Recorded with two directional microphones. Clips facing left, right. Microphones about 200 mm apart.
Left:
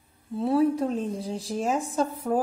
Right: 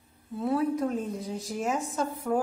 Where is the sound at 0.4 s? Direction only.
30° left (ahead or behind).